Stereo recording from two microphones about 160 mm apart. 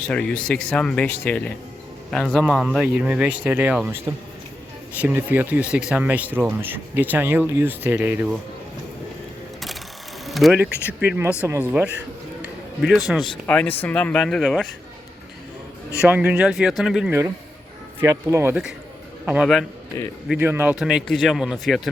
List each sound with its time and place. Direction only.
0.1 s speech: 5° left (ahead or behind); by 8.4 s 10° right (ahead or behind)
10.2 s a sound: centre (ahead or behind)
11.0 s speech: 10° right (ahead or behind)
12.4 s a man's voice: centre (ahead or behind)
16.0 s a man's voice: 10° right (ahead or behind)
17.1 s speech: 15° right (ahead or behind)
19.2 s a man's voice: 5° right (ahead or behind)
19.9 s speech: 15° left (ahead or behind)
20.4 s speech: 15° right (ahead or behind)
20.7 s a man's voice: 5° right (ahead or behind)